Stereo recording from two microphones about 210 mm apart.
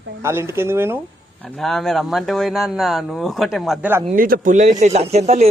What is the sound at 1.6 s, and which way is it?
Speech, centre (ahead or behind).